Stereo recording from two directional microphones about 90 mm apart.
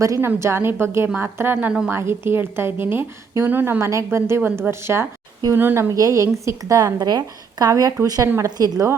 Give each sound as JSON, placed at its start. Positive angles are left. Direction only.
{"t": 0.2, "sound": "a woman's voice", "side_deg": -30}
{"t": 5.9, "sound": "a woman's voice", "side_deg": -35}